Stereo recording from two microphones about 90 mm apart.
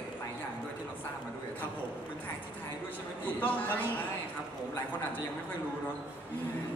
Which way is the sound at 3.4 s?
20° left (ahead or behind).